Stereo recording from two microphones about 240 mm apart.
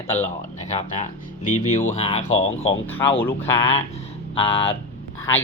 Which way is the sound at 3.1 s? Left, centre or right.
Centre.